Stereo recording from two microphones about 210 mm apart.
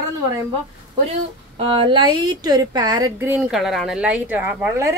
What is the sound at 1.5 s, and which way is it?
A woman's voice, 25° right (ahead or behind).